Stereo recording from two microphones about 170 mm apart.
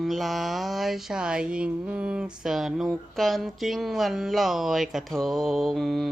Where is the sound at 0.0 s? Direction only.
Centre (ahead or behind).